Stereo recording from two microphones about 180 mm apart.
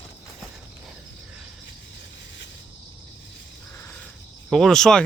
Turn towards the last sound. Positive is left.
turn(degrees=5)  # may be behind; listen again after turning